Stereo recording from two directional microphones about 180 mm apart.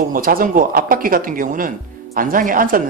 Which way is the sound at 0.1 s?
50° right (ahead or behind).